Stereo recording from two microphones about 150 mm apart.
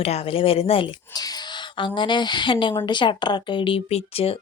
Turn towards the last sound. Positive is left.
turn(degrees=40)  # may be behind; listen again after turning